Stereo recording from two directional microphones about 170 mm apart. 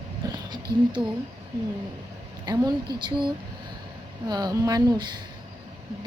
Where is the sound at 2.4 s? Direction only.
25° right (ahead or behind).